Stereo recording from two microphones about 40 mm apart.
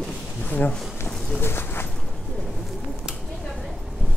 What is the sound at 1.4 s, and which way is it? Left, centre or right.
Bird, left.